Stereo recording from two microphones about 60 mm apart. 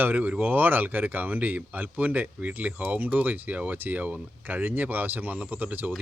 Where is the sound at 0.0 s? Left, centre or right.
Right.